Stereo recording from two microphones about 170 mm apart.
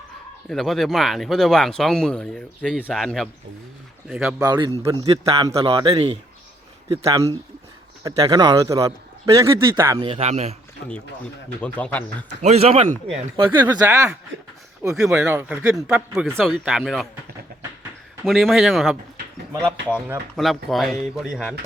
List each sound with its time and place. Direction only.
0.4 s speech: centre (ahead or behind)
4.4 s a man's voice: 25° right (ahead or behind)
5.0 s speech: 35° right (ahead or behind)
5.4 s a man's voice: 20° right (ahead or behind)
5.6 s speech: 30° right (ahead or behind)
6.8 s a man's voice: 20° right (ahead or behind)
10.2 s speech: 40° right (ahead or behind)
10.8 s speech: 75° left (ahead or behind)
11.6 s speech: 10° left (ahead or behind)
12.4 s speech: 40° right (ahead or behind)
13.6 s speech: 10° right (ahead or behind)
18.3 s speech: centre (ahead or behind)
20.3 s speech: centre (ahead or behind)